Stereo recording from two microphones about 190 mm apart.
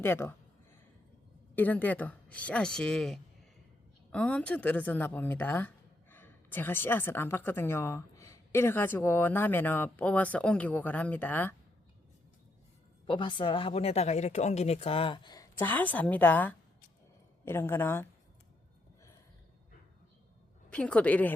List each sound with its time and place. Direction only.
0.0 s speech: 10° left (ahead or behind)
1.5 s speech: 10° left (ahead or behind)
13.1 s a woman's voice: 25° left (ahead or behind)
20.7 s speech: 5° left (ahead or behind)